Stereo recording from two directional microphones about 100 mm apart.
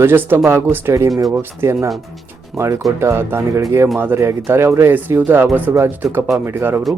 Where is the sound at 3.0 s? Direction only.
25° right (ahead or behind).